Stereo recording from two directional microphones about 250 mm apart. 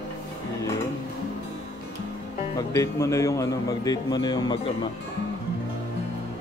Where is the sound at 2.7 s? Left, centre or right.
Centre.